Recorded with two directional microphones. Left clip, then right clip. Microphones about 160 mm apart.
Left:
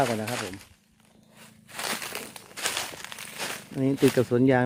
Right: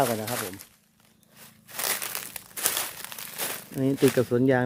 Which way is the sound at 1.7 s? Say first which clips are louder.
Even; 50° right (ahead or behind).